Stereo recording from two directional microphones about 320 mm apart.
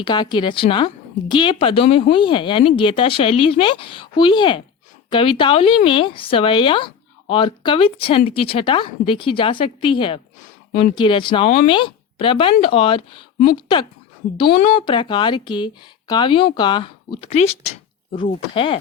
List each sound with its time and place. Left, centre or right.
0.0 s speech: centre